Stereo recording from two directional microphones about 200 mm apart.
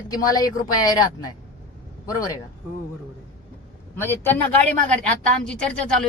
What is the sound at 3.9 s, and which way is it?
Speech, 10° left (ahead or behind).